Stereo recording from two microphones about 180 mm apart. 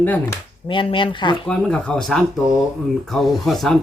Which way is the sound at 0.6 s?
30° left (ahead or behind).